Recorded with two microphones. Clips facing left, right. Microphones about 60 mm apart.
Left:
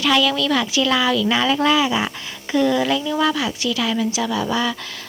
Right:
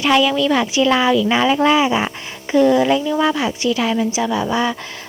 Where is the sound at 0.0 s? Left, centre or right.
Right.